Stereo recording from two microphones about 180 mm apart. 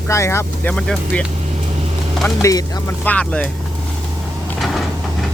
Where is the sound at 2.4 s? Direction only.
20° left (ahead or behind).